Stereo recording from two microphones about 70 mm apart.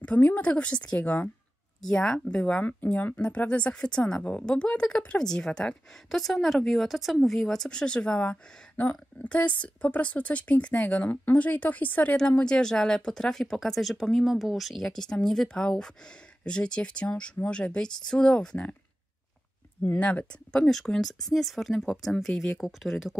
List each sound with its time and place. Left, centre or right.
0.0 s a woman's voice: left
1.8 s speech: centre
19.8 s speech: centre
20.6 s speech: centre
22.6 s speech: centre